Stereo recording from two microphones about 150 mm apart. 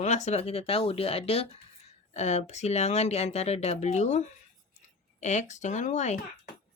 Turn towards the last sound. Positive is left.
turn(degrees=50)  # may be behind; listen again after turning